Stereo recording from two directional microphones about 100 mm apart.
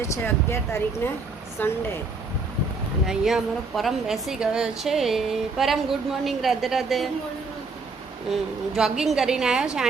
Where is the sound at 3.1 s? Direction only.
5° right (ahead or behind).